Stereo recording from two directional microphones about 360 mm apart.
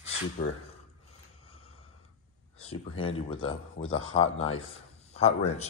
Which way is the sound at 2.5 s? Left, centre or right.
Centre.